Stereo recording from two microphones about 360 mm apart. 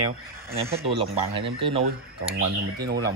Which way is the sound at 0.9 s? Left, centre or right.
Centre.